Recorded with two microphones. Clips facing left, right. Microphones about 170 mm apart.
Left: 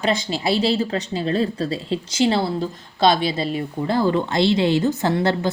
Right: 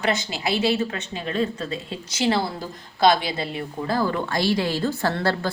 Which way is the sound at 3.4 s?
25° left (ahead or behind).